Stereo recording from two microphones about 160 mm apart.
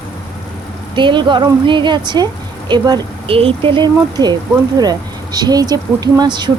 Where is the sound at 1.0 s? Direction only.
30° right (ahead or behind).